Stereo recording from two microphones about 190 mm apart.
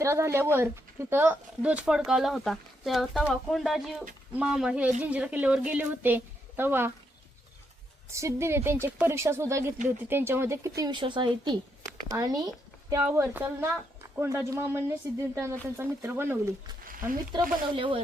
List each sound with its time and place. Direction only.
0.0 s a woman's voice: 15° right (ahead or behind)
8.1 s a woman's voice: 15° right (ahead or behind)
17.0 s speech: 25° right (ahead or behind)